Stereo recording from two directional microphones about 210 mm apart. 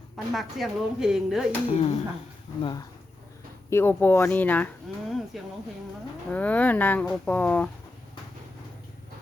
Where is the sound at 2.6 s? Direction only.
20° left (ahead or behind).